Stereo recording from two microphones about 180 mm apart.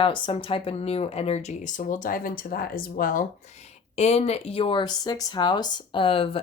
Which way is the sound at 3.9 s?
35° left (ahead or behind).